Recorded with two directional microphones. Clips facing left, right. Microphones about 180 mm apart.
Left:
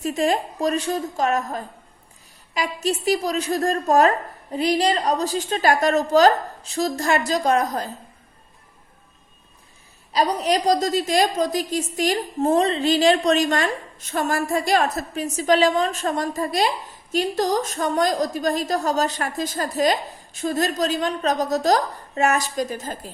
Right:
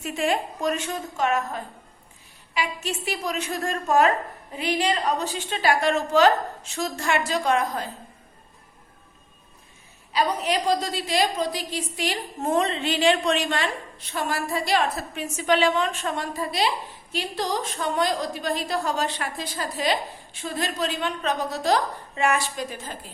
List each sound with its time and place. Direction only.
0.0 s a woman's voice: 35° left (ahead or behind)
10.1 s a woman's voice: 35° left (ahead or behind)